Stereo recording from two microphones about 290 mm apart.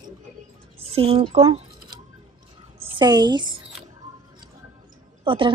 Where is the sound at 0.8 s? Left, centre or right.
Centre.